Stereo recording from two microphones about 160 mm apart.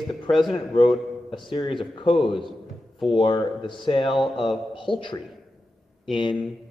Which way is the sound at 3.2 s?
30° left (ahead or behind).